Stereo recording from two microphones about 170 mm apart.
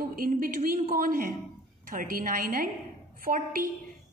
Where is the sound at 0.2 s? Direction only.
55° right (ahead or behind).